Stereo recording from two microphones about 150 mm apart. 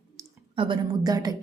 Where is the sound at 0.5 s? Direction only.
35° right (ahead or behind).